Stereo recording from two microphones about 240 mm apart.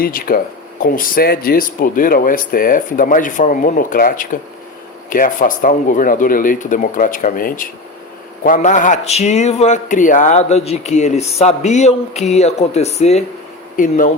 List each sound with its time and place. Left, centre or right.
0.0 s speech: left